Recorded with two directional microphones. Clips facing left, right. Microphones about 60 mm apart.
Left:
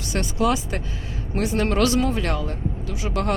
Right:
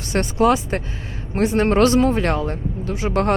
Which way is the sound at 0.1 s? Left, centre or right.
Right.